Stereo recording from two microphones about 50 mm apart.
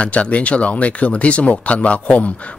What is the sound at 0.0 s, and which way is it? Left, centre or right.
Speech, left.